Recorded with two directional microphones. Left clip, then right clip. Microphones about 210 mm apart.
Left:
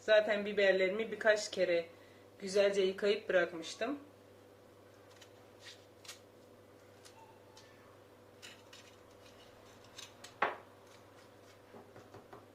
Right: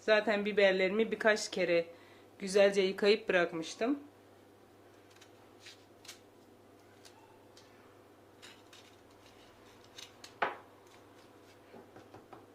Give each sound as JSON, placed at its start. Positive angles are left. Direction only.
{"t": 0.0, "sound": "speech", "side_deg": -50}